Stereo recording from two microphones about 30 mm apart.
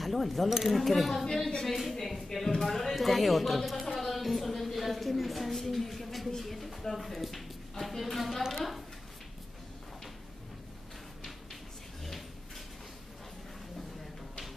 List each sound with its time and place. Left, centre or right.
0.0 s speech: centre
1.2 s a woman's voice: centre
1.7 s speech: centre
8.4 s speech: centre